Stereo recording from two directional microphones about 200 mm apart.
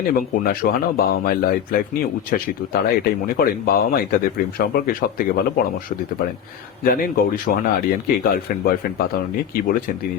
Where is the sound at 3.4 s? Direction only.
50° left (ahead or behind).